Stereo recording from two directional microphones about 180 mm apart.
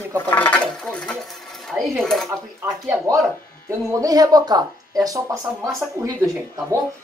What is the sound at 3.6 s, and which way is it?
Speech, 20° right (ahead or behind).